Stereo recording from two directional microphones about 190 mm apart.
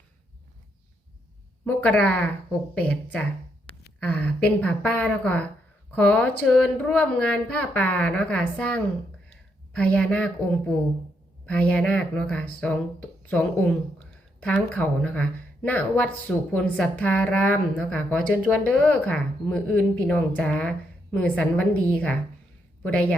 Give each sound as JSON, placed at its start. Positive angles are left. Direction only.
{"t": 1.6, "sound": "speech", "side_deg": 5}
{"t": 3.7, "sound": "a sound", "side_deg": 30}
{"t": 4.0, "sound": "speech", "side_deg": 10}